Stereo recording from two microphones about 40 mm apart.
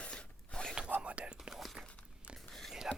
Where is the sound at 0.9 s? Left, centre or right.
Right.